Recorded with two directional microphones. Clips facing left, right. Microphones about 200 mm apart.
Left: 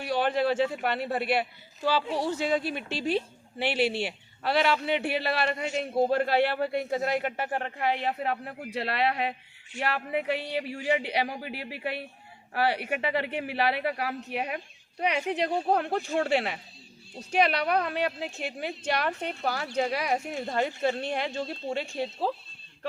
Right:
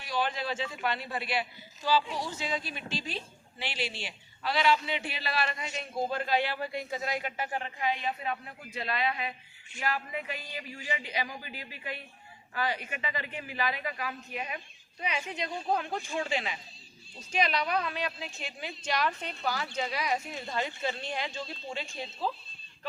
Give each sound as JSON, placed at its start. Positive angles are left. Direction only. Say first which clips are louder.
{"t": 0.0, "sound": "a woman's voice", "louder": "left 7 dB", "side_deg": 60}